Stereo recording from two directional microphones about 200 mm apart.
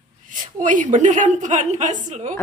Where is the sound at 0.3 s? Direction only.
40° right (ahead or behind).